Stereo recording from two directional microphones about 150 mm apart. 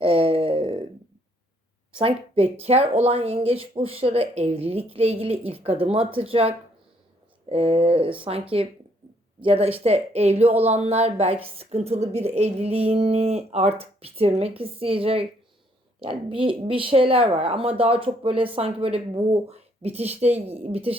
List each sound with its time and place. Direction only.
0.0 s a sound: 40° right (ahead or behind)
2.0 s speech: 40° right (ahead or behind)
7.5 s a woman's voice: 40° right (ahead or behind)